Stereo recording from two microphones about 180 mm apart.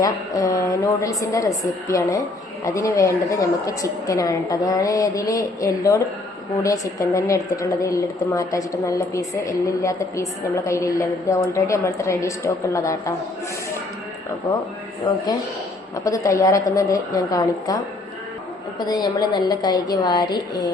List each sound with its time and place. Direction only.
0.0 s a woman's voice: 20° left (ahead or behind)
14.5 s a woman's voice: 20° left (ahead or behind)
16.0 s a woman's voice: 20° left (ahead or behind)